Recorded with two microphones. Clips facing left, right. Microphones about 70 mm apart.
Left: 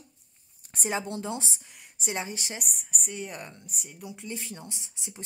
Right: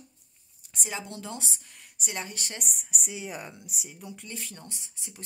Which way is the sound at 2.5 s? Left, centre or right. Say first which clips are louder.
Even; centre.